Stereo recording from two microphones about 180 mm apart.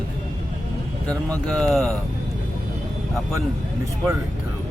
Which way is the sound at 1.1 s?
5° left (ahead or behind).